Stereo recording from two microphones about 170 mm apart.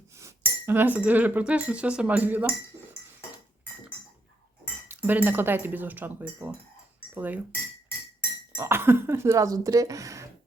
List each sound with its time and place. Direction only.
0.1 s cutlery: 15° right (ahead or behind)
4.9 s speech: 10° right (ahead or behind)
8.5 s speech: 15° right (ahead or behind)